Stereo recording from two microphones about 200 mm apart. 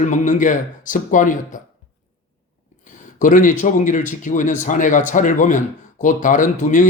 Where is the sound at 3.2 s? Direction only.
40° left (ahead or behind).